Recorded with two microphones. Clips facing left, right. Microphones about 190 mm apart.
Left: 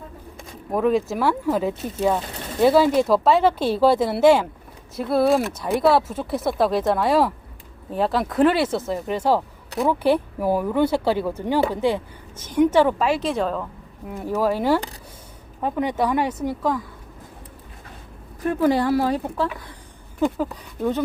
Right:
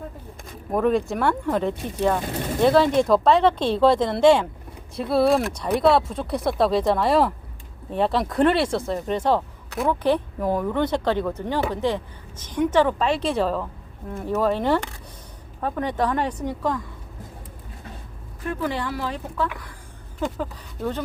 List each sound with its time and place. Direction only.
0.7 s speech: centre (ahead or behind)
18.6 s a woman's voice: 40° left (ahead or behind)
20.4 s speech: 10° left (ahead or behind)